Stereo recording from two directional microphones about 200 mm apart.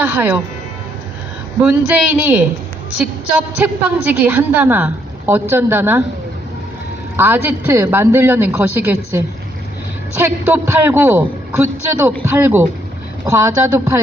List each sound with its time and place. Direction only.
0.0 s speech: 10° right (ahead or behind)
1.9 s a woman's voice: 5° right (ahead or behind)
3.6 s a woman's voice: 5° right (ahead or behind)
7.2 s a woman's voice: 10° right (ahead or behind)